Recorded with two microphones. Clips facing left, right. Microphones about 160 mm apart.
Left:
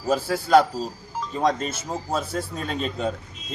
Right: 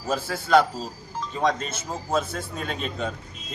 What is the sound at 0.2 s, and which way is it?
A man's voice, 35° left (ahead or behind).